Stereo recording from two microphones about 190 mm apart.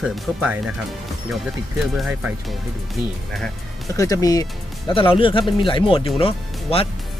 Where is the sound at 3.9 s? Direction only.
15° left (ahead or behind).